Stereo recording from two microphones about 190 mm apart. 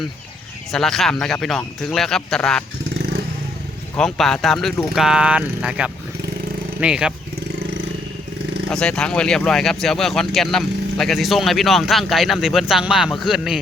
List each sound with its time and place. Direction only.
0.7 s speech: centre (ahead or behind)
2.9 s vehicle: 60° right (ahead or behind)
3.9 s speech: centre (ahead or behind)
8.7 s speech: 5° left (ahead or behind)